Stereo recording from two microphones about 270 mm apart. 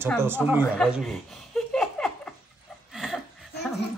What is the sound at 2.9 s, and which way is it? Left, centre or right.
Chuckle, centre.